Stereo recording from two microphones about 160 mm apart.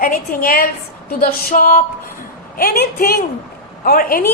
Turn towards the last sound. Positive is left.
turn(degrees=65)  # may be behind; listen again after turning